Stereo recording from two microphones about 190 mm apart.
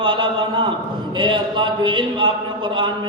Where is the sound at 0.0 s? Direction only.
25° right (ahead or behind).